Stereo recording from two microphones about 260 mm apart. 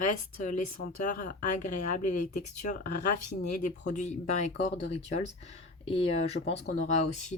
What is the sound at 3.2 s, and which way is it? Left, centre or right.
Speech, left.